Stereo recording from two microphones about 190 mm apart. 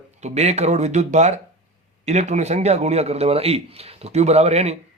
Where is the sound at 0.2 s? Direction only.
35° right (ahead or behind).